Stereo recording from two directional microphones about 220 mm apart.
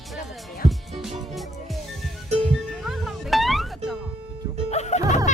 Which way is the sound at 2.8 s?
Centre (ahead or behind).